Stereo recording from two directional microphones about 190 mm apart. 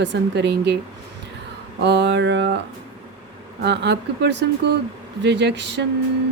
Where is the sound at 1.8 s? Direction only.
65° right (ahead or behind).